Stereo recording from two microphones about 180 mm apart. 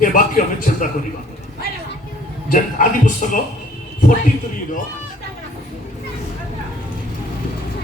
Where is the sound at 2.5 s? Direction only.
45° left (ahead or behind).